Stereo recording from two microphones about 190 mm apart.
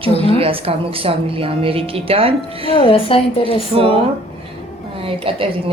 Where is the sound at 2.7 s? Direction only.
30° left (ahead or behind).